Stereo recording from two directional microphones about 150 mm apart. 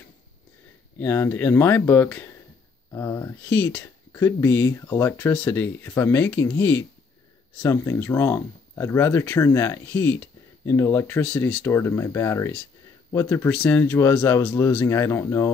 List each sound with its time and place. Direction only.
0.9 s speech: 15° left (ahead or behind)